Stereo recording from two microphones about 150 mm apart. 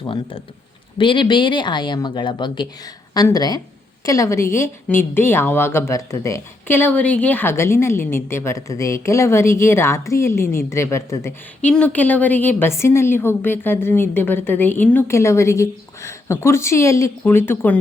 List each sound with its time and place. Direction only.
0.1 s a woman's voice: 35° left (ahead or behind); by 17.7 s 15° left (ahead or behind)